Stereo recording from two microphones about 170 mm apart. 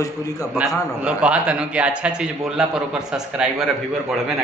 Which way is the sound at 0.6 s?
5° right (ahead or behind).